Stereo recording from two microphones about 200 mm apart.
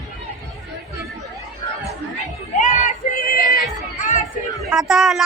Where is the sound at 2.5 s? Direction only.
40° left (ahead or behind).